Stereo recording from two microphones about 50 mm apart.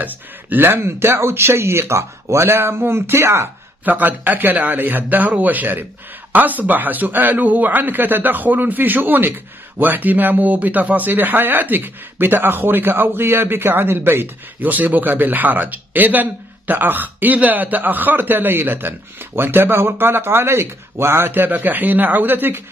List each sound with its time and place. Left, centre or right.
0.0 s speech: right
3.8 s a man's voice: right
21.3 s a man's voice: right